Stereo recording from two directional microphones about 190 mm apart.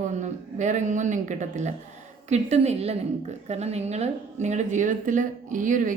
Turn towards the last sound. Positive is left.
turn(degrees=-45)  # may be behind; listen again after turning